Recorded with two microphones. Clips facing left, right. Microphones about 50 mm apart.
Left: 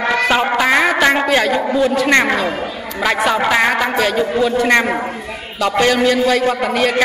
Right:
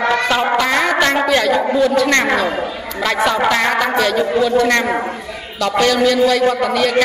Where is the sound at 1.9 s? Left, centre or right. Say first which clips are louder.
Left 1 dB; centre.